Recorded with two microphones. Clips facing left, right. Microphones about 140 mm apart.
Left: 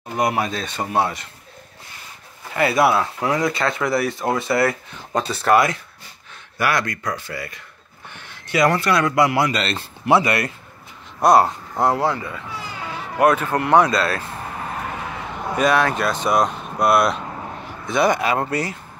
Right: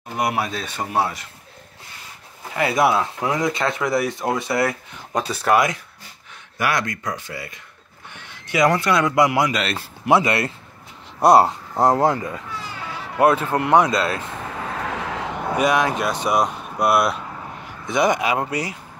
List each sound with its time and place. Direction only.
0.2 s a man's voice: 5° right (ahead or behind)
2.5 s a man's voice: 15° right (ahead or behind)
11.8 s speech: 45° right (ahead or behind)
13.2 s speech: 25° right (ahead or behind)
14.7 s vehicle: 90° right
15.5 s a man's voice: 15° right (ahead or behind)